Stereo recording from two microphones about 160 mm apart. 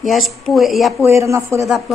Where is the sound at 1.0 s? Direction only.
15° right (ahead or behind).